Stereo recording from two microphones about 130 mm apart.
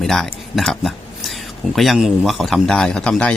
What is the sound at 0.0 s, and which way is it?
Speech, centre (ahead or behind).